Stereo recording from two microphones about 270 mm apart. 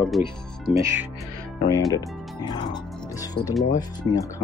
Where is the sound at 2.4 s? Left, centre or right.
Centre.